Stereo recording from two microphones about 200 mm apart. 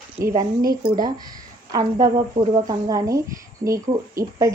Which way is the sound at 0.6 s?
45° right (ahead or behind).